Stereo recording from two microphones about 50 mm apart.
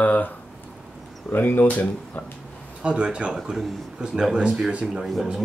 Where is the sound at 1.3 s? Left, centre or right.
Left.